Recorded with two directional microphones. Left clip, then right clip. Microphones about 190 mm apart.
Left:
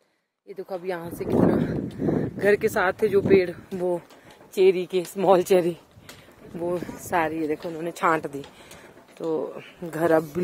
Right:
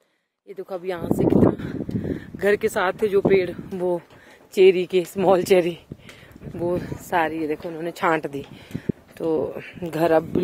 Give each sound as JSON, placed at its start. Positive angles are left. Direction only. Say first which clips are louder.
{"t": 0.6, "sound": "speech", "louder": "right 2 dB", "side_deg": -10}
{"t": 3.7, "sound": "speech", "louder": "right 2 dB", "side_deg": -20}
{"t": 4.6, "sound": "speech", "louder": "right 4 dB", "side_deg": -35}
{"t": 6.6, "sound": "speech", "louder": "right 3 dB", "side_deg": -20}
{"t": 9.2, "sound": "speech", "louder": "right 4 dB", "side_deg": -45}